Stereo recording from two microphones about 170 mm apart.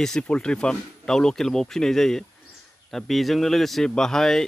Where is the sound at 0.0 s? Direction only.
5° left (ahead or behind).